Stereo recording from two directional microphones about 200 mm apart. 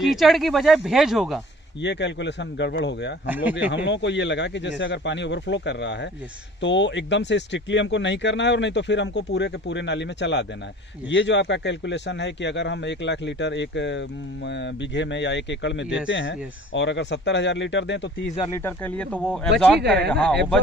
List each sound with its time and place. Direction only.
0.0 s speech: centre (ahead or behind)
1.8 s speech: 60° left (ahead or behind)
3.3 s speech: 10° right (ahead or behind)
3.7 s speech: 60° left (ahead or behind)
18.5 s speech: 10° left (ahead or behind)
19.8 s speech: 55° right (ahead or behind)
20.1 s speech: 5° left (ahead or behind)